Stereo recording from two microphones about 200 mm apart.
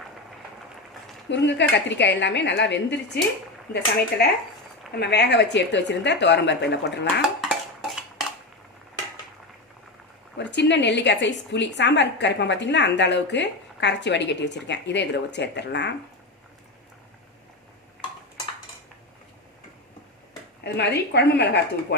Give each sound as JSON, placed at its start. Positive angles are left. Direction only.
{"t": 1.3, "sound": "a woman's voice", "side_deg": 60}
{"t": 7.2, "sound": "dishes", "side_deg": 0}
{"t": 10.3, "sound": "a woman's voice", "side_deg": 60}
{"t": 20.7, "sound": "a woman's voice", "side_deg": 60}